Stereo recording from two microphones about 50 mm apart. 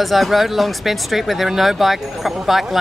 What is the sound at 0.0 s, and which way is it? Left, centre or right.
Speech, centre.